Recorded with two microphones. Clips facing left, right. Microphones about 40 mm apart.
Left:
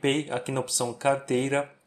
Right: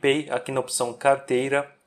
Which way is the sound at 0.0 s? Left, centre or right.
Centre.